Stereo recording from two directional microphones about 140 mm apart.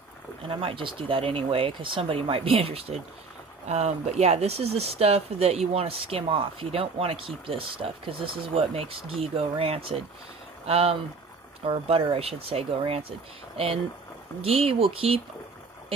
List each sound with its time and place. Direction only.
0.5 s speech: 40° right (ahead or behind)
14.4 s speech: 45° right (ahead or behind)